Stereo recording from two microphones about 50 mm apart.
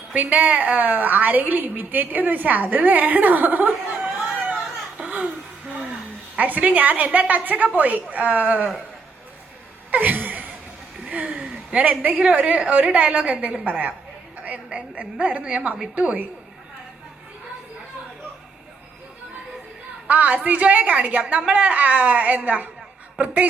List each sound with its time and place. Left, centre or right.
0.1 s a woman's voice: right
4.9 s laughter: right
6.3 s a woman's voice: right
9.9 s a sound: right
11.0 s a woman's voice: right
20.1 s a woman's voice: right